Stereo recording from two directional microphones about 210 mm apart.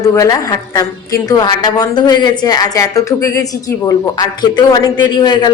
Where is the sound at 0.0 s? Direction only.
15° left (ahead or behind).